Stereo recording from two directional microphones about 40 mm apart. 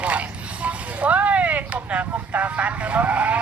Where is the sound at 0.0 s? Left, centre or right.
Right.